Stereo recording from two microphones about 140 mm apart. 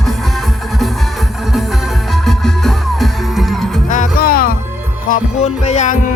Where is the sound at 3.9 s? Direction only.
80° left.